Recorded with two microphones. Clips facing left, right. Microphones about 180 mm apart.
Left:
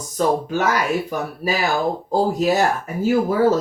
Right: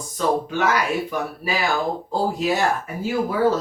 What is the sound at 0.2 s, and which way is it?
Speech, 45° left (ahead or behind).